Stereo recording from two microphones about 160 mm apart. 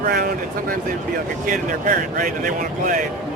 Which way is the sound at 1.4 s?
55° right (ahead or behind).